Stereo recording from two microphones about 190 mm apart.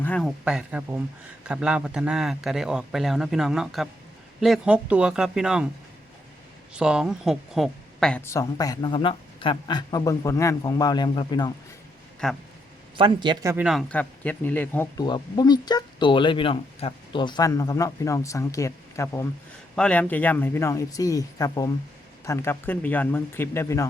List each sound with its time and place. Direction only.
0.0 s speech: 5° left (ahead or behind)
6.7 s a woman's voice: 5° right (ahead or behind); by 11.5 s 25° left (ahead or behind)
12.2 s speech: 5° left (ahead or behind)
13.0 s speech: 25° right (ahead or behind)
13.7 s speech: 5° left (ahead or behind)
15.0 s a woman's voice: 20° left (ahead or behind)